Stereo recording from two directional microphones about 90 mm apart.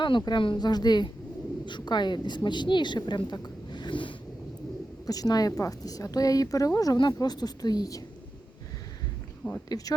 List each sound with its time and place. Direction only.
0.0 s a woman's voice: 55° left (ahead or behind)
5.0 s speech: 45° left (ahead or behind)
9.6 s speech: 40° left (ahead or behind)